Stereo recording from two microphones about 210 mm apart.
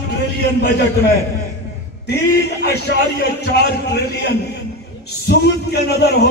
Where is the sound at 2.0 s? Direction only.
50° left (ahead or behind).